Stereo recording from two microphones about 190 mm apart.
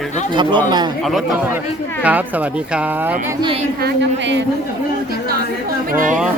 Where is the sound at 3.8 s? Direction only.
60° right (ahead or behind).